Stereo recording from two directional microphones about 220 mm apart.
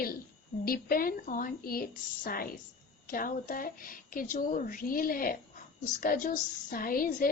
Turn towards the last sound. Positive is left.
turn(degrees=40)  # may be behind; listen again after turning